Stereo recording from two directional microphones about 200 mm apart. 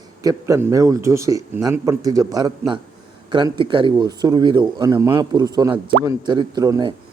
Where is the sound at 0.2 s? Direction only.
15° right (ahead or behind).